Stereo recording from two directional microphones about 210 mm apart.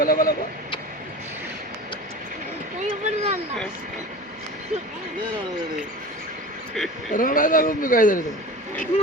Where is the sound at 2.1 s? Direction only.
40° right (ahead or behind).